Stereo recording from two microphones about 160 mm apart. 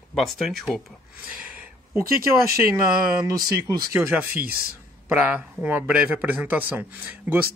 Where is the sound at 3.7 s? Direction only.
20° right (ahead or behind).